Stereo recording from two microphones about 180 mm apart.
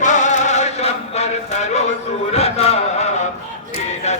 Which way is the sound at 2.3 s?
35° left (ahead or behind).